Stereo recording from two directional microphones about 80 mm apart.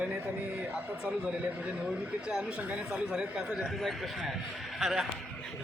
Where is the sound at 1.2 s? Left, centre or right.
Centre.